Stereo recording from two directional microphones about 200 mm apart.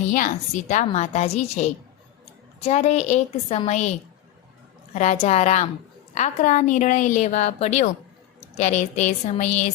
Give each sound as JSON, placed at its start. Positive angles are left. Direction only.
{"t": 0.1, "sound": "a woman's voice", "side_deg": 40}
{"t": 4.9, "sound": "a woman's voice", "side_deg": 35}